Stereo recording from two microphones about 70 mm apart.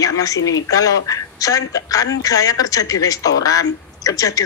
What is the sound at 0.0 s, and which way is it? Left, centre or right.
A woman's voice, left.